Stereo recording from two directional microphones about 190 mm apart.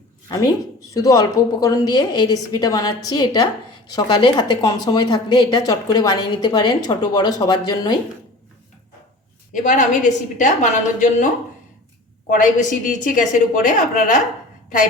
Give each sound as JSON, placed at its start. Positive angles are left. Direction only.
{"t": 0.3, "sound": "a woman's voice", "side_deg": 20}
{"t": 9.5, "sound": "a woman's voice", "side_deg": 40}
{"t": 12.3, "sound": "a woman's voice", "side_deg": 40}